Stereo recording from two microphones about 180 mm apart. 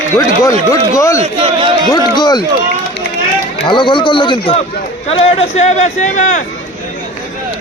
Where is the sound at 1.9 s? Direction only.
25° left (ahead or behind).